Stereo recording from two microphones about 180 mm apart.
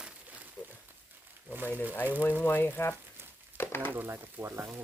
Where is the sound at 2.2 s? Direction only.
10° left (ahead or behind).